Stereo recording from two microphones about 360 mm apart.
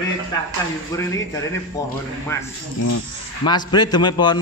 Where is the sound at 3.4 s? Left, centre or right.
Centre.